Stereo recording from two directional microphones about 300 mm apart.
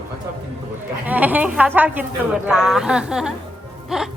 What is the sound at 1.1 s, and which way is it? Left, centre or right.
Speech, centre.